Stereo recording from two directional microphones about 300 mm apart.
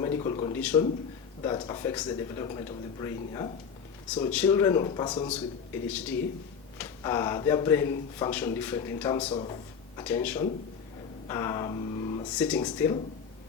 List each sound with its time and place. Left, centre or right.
0.0 s a sound: centre
0.7 s speech: centre
5.9 s speech: centre
12.3 s speech: centre